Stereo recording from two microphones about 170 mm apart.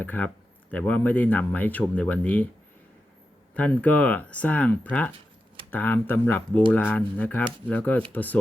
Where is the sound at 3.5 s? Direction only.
10° left (ahead or behind).